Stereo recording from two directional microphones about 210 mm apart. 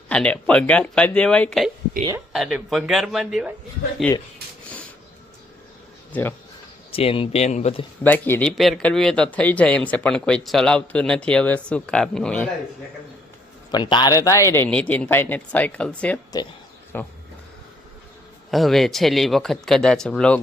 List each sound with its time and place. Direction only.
0.1 s speech: 5° left (ahead or behind)
6.9 s speech: 25° left (ahead or behind)
8.0 s speech: 10° left (ahead or behind)
13.7 s a man's voice: 20° left (ahead or behind)
18.5 s speech: centre (ahead or behind)